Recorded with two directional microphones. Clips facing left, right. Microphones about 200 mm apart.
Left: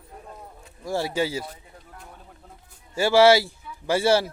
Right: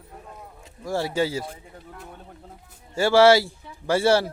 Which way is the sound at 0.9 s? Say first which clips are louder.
Right 1 dB; 15° left (ahead or behind).